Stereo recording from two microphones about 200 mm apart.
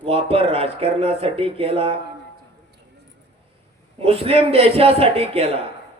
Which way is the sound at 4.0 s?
30° right (ahead or behind).